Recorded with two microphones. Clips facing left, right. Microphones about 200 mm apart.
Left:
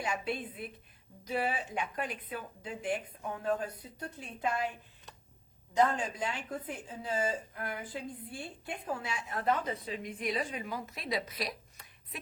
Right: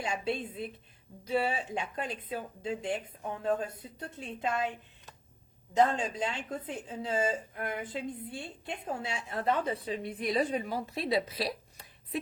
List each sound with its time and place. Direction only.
0.0 s a woman's voice: 25° right (ahead or behind)
5.7 s a woman's voice: 25° right (ahead or behind)